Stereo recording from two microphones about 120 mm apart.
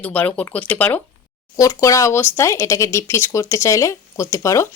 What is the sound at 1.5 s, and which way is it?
A woman's voice, 25° left (ahead or behind).